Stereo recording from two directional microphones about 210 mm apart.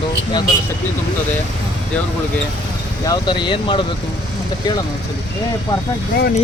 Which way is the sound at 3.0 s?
20° left (ahead or behind).